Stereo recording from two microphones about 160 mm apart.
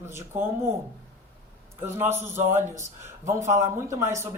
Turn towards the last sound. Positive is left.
turn(degrees=-15)  # may be behind; listen again after turning